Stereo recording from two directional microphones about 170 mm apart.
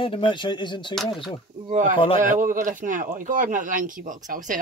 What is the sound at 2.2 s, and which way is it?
Speech, 50° right (ahead or behind).